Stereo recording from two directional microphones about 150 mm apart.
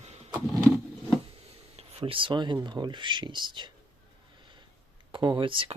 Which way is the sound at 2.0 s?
35° right (ahead or behind).